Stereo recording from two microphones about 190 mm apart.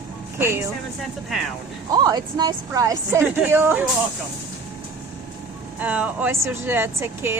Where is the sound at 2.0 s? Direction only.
20° right (ahead or behind).